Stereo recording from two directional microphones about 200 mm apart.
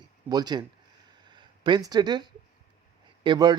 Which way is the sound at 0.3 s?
20° right (ahead or behind).